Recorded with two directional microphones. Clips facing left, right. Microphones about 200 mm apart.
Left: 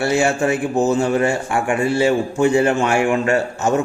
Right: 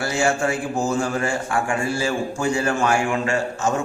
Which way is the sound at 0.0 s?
25° left (ahead or behind).